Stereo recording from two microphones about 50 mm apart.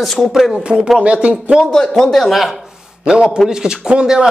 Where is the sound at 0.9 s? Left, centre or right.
Right.